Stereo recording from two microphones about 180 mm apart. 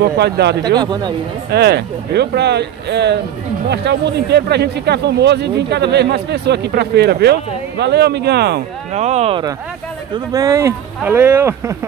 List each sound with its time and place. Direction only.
0.0 s speech: 65° right (ahead or behind)
0.7 s speech: 25° right (ahead or behind)
1.5 s speech: 65° right (ahead or behind)
8.9 s speech: 40° right (ahead or behind)
10.1 s speech: 20° right (ahead or behind)